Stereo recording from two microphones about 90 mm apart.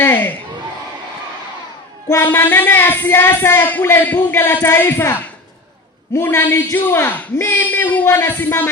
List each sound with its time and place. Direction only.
0.0 s crowd: 20° left (ahead or behind)
2.0 s speech: 25° left (ahead or behind)